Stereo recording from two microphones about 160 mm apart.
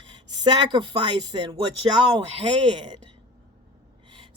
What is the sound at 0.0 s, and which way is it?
Speech, 30° right (ahead or behind).